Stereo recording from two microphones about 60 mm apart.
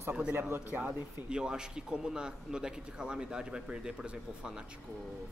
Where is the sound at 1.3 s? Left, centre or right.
Centre.